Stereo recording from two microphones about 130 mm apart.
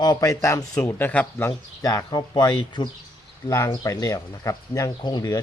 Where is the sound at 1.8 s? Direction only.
30° left (ahead or behind).